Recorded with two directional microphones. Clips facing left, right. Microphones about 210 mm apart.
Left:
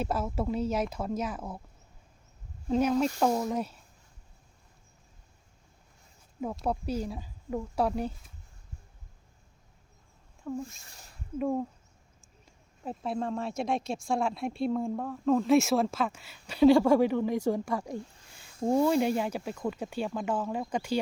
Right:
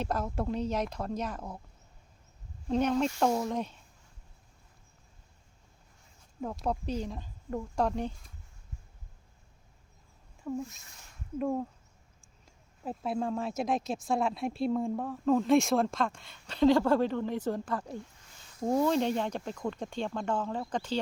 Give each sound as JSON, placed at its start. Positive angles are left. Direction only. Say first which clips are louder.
{"t": 0.0, "sound": "speech", "louder": "left 2 dB", "side_deg": 5}
{"t": 2.6, "sound": "speech", "louder": "left 2 dB", "side_deg": 5}
{"t": 6.4, "sound": "speech", "louder": "left 1 dB", "side_deg": 5}
{"t": 10.4, "sound": "speech", "louder": "even", "side_deg": 0}
{"t": 10.8, "sound": "speech", "louder": "left 2 dB", "side_deg": 35}
{"t": 11.3, "sound": "speech", "louder": "left 2 dB", "side_deg": 5}